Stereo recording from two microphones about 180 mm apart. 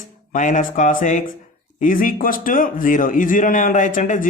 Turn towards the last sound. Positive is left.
turn(degrees=45)  # may be behind; listen again after turning